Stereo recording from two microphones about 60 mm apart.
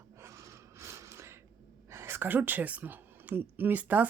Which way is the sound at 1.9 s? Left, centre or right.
Right.